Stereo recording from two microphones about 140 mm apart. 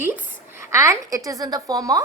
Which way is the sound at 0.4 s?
20° right (ahead or behind).